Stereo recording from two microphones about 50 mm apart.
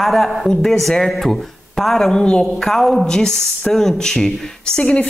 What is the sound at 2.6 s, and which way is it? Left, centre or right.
A woman's voice, centre.